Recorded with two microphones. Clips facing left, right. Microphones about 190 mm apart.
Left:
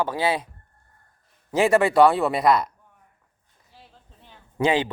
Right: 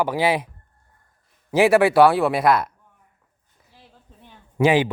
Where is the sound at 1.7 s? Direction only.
5° right (ahead or behind).